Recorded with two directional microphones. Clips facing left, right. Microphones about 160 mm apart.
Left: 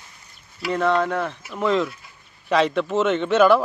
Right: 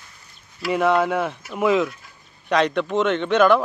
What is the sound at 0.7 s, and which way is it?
A child's voice, 10° right (ahead or behind).